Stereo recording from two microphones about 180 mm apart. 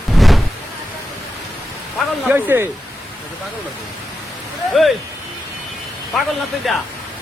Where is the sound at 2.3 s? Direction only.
10° right (ahead or behind).